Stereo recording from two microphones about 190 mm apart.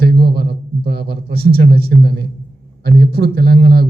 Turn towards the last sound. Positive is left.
turn(degrees=-55)  # may be behind; listen again after turning